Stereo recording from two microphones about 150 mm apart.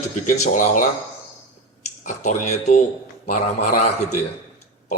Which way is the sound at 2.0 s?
55° left (ahead or behind).